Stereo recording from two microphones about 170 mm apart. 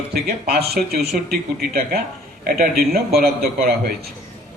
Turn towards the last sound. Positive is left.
turn(degrees=-65)  # may be behind; listen again after turning